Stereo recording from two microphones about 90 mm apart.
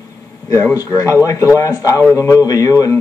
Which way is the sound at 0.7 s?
40° left (ahead or behind).